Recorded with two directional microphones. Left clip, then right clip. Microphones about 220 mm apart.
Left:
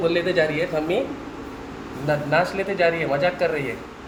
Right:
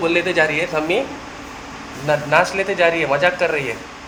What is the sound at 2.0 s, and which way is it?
A man's voice, 10° right (ahead or behind).